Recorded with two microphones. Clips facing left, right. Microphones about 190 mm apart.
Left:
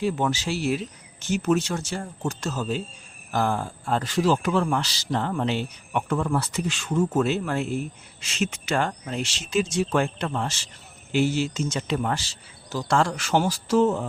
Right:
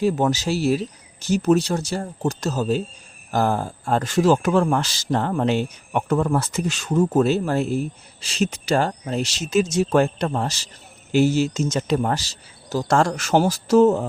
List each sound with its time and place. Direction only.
0.0 s speech: 40° right (ahead or behind)